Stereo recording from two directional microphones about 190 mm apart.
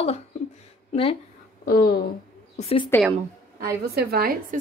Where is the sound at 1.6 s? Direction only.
50° left (ahead or behind).